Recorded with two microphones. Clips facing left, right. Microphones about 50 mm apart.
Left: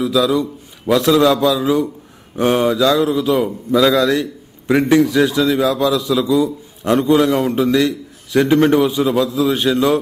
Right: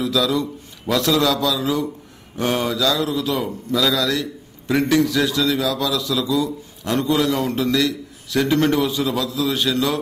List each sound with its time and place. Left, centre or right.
0.0 s a man's voice: centre